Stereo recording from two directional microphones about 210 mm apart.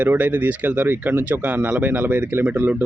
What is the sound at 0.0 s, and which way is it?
Speech, 10° right (ahead or behind).